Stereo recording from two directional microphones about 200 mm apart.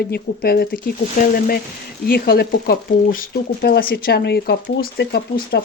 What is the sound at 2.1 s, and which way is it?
Speech, 50° left (ahead or behind).